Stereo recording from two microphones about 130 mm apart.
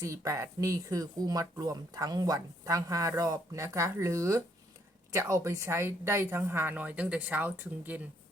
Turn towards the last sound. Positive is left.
turn(degrees=-15)  # may be behind; listen again after turning